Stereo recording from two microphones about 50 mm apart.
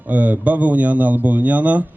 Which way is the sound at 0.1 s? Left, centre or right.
Right.